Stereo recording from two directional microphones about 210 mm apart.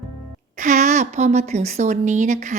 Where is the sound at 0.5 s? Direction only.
35° right (ahead or behind).